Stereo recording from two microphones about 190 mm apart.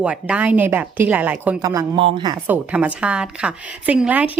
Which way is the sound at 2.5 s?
5° right (ahead or behind).